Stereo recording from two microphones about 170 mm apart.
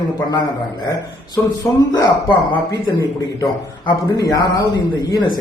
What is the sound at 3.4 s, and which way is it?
A man's voice, 20° left (ahead or behind).